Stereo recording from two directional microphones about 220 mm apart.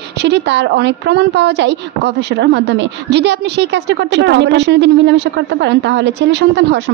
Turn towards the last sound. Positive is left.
turn(degrees=-50)  # may be behind; listen again after turning